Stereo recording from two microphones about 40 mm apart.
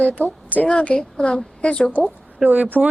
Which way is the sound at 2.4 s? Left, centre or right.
Right.